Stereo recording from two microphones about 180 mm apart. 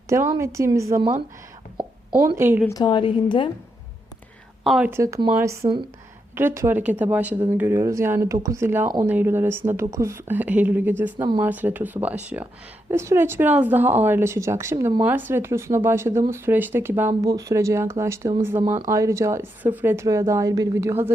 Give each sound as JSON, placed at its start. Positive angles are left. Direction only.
{"t": 0.3, "sound": "speech", "side_deg": -15}
{"t": 2.4, "sound": "speech", "side_deg": -10}
{"t": 2.6, "sound": "a woman's voice", "side_deg": 20}
{"t": 4.6, "sound": "speech", "side_deg": 0}
{"t": 4.9, "sound": "speech", "side_deg": -15}